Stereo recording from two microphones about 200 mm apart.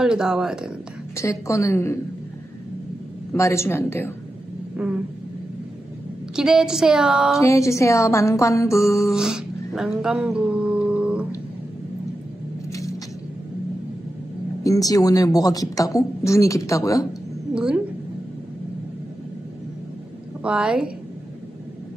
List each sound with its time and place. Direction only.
0.0 s a woman's voice: 5° right (ahead or behind)
1.1 s a woman's voice: 15° left (ahead or behind)
3.3 s a woman's voice: 15° left (ahead or behind)
4.7 s a woman's voice: 5° right (ahead or behind)
6.3 s a woman's voice: 5° right (ahead or behind)
7.3 s a woman's voice: 15° left (ahead or behind)
9.1 s music: 5° right (ahead or behind)
14.6 s a woman's voice: 15° left (ahead or behind)
20.4 s a woman's voice: 5° right (ahead or behind)